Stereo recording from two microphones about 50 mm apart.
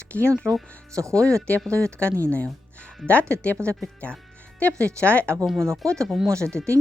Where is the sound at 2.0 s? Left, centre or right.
Right.